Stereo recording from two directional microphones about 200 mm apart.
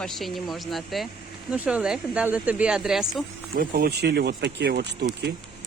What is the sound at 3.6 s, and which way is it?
Speech, 50° right (ahead or behind).